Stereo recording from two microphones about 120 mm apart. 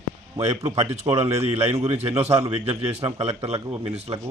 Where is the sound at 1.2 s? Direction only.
65° right (ahead or behind).